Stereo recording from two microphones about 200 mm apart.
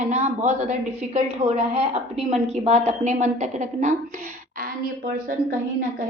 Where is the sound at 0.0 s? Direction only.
35° right (ahead or behind).